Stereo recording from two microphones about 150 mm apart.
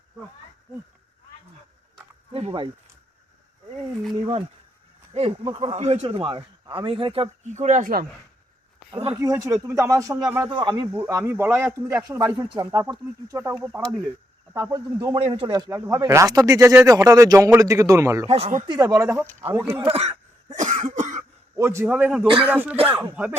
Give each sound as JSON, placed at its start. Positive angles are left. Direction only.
{"t": 2.3, "sound": "speech", "side_deg": -35}
{"t": 4.1, "sound": "speech", "side_deg": -30}
{"t": 5.7, "sound": "speech", "side_deg": -45}
{"t": 8.9, "sound": "speech", "side_deg": -40}
{"t": 9.1, "sound": "speech", "side_deg": -20}
{"t": 10.9, "sound": "speech", "side_deg": -15}
{"t": 15.1, "sound": "speech", "side_deg": -35}
{"t": 15.7, "sound": "speech", "side_deg": -20}
{"t": 18.3, "sound": "speech", "side_deg": -40}
{"t": 18.6, "sound": "speech", "side_deg": -25}
{"t": 19.9, "sound": "speech", "side_deg": -45}
{"t": 20.6, "sound": "cough", "side_deg": -60}
{"t": 21.5, "sound": "speech", "side_deg": -20}